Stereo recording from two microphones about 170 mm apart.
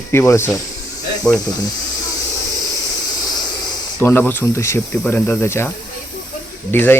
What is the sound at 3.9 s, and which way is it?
Speech, 10° left (ahead or behind).